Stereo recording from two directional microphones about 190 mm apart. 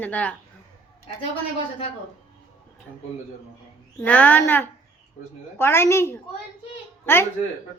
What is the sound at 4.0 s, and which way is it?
A woman's voice, 10° left (ahead or behind).